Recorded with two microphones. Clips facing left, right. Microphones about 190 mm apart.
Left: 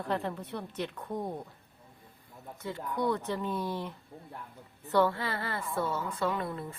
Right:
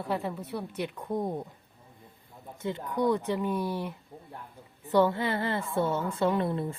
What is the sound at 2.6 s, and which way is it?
A woman's voice, 15° right (ahead or behind).